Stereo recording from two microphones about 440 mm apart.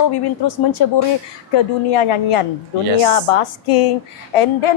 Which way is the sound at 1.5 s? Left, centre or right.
Left.